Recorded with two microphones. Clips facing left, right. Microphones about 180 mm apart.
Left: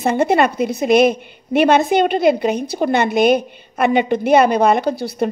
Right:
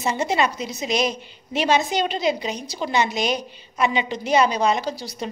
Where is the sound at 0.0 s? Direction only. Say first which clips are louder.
Left 7 dB; 55° left (ahead or behind).